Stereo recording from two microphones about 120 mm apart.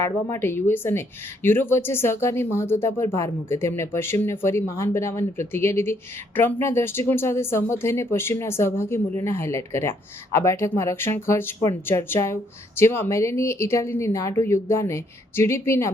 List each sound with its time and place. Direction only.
0.0 s speech: 20° left (ahead or behind)